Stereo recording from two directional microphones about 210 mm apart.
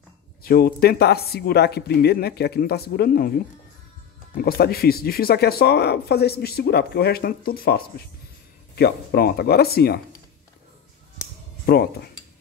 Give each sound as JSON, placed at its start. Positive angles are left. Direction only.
{"t": 0.4, "sound": "speech", "side_deg": 45}
{"t": 11.6, "sound": "speech", "side_deg": 45}